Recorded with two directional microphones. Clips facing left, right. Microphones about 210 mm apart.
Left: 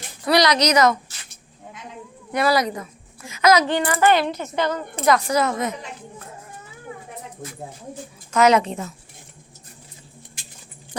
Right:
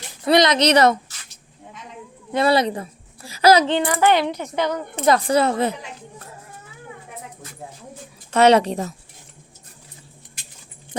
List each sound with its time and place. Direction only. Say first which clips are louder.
0.3 s a woman's voice: right 2 dB; 25° right (ahead or behind)
2.3 s a woman's voice: right 2 dB; 25° right (ahead or behind)
3.7 s speech: even; 15° right (ahead or behind)
5.0 s speech: right 2 dB; 30° right (ahead or behind)
8.3 s speech: right 2 dB; 35° right (ahead or behind)